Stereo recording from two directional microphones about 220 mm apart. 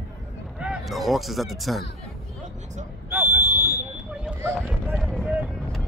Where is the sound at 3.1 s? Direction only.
10° right (ahead or behind).